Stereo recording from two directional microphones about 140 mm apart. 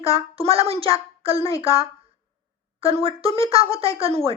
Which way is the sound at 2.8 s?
45° right (ahead or behind).